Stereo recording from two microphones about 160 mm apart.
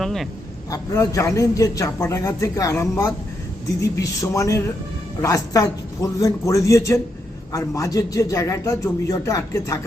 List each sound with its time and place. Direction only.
0.0 s a man's voice: centre (ahead or behind)
0.7 s a man's voice: 20° left (ahead or behind)